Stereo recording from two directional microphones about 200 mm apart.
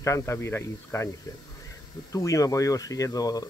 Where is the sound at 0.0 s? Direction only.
15° left (ahead or behind).